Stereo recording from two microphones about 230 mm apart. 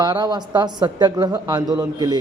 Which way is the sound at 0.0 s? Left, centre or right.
Centre.